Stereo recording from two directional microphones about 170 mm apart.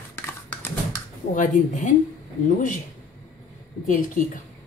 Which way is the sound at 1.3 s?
50° left (ahead or behind).